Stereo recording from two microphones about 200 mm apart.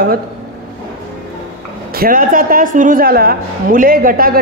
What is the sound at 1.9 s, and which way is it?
A woman's voice, 45° right (ahead or behind).